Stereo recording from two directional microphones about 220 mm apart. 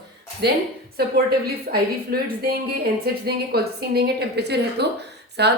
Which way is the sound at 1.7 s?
45° right (ahead or behind).